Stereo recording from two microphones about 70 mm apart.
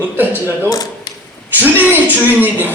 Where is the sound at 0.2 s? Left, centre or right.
Right.